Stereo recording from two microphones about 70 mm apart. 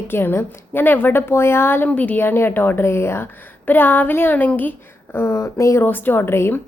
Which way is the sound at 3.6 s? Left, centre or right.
Left.